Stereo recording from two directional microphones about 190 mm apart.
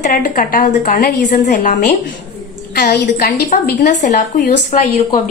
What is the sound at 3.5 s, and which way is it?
Speech, 40° left (ahead or behind).